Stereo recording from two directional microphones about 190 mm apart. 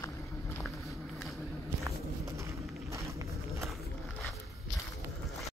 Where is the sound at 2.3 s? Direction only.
15° right (ahead or behind).